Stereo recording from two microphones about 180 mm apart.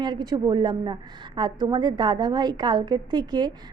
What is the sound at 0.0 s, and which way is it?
A woman's voice, 25° right (ahead or behind).